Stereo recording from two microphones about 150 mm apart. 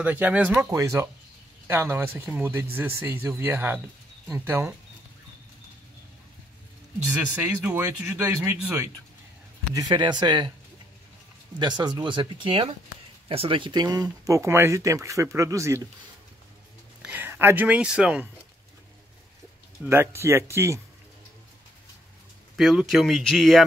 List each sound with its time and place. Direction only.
0.0 s speech: 10° right (ahead or behind)
0.7 s speech: 20° right (ahead or behind)
7.6 s speech: 15° right (ahead or behind)
9.8 s speech: 30° right (ahead or behind)
11.6 s speech: 30° right (ahead or behind)
17.0 s speech: 10° right (ahead or behind)
19.8 s speech: 15° right (ahead or behind)
22.6 s speech: 5° right (ahead or behind)